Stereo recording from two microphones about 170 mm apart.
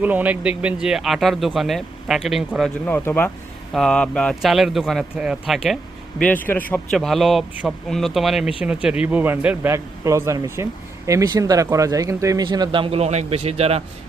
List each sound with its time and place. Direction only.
0.0 s speech: 10° right (ahead or behind)
2.8 s speech: 10° left (ahead or behind)
6.1 s speech: 10° left (ahead or behind); by 13.8 s 35° right (ahead or behind)